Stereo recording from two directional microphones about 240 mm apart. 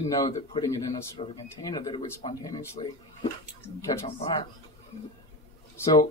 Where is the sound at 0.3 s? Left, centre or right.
Centre.